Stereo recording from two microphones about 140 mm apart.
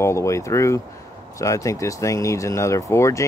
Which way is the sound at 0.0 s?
20° left (ahead or behind).